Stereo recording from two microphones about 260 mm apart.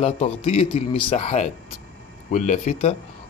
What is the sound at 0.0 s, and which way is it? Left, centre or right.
A man's voice, left.